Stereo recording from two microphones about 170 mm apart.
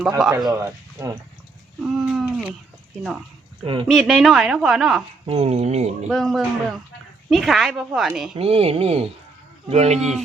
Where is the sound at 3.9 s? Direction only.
Centre (ahead or behind).